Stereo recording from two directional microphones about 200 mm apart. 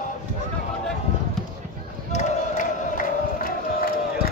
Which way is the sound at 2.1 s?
35° left (ahead or behind).